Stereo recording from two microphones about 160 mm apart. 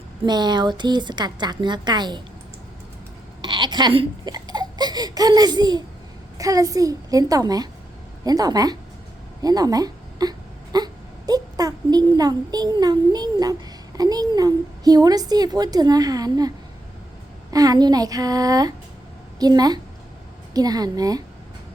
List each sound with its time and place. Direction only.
0.3 s a child's voice: 25° right (ahead or behind)
3.4 s a child's voice: 30° right (ahead or behind)
9.4 s wail: 25° right (ahead or behind)
11.3 s a child's voice: 25° right (ahead or behind)
17.5 s a child's voice: 25° right (ahead or behind)